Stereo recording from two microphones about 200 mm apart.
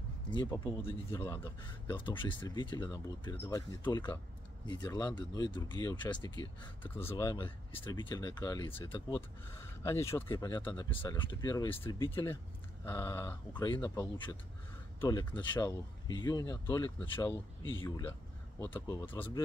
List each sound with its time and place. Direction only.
0.3 s speech: 20° left (ahead or behind)
6.8 s speech: 10° left (ahead or behind)
7.1 s speech: 20° left (ahead or behind)
9.5 s speech: 15° left (ahead or behind)
11.0 s speech: 10° left (ahead or behind)